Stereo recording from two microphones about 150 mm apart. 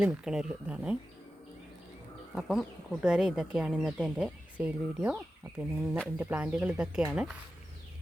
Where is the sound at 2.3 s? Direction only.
Centre (ahead or behind).